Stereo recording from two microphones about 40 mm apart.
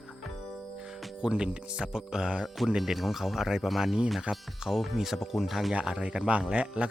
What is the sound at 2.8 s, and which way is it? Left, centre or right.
Speech, centre.